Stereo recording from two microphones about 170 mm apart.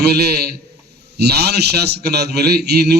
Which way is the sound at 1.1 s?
75° right (ahead or behind).